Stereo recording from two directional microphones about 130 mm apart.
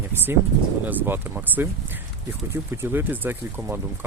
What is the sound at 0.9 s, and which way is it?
Speech, 15° right (ahead or behind).